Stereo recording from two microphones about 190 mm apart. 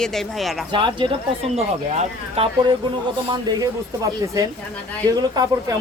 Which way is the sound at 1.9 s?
35° right (ahead or behind).